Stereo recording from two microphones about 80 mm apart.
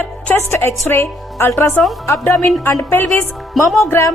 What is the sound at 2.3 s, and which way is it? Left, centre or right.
Speech, centre.